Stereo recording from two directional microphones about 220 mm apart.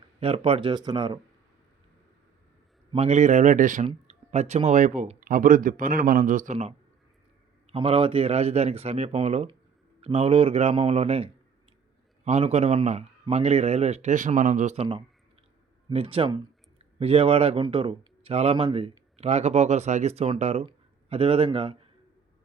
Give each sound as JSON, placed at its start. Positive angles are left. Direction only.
{"t": 0.2, "sound": "speech", "side_deg": -25}
{"t": 2.9, "sound": "speech", "side_deg": -30}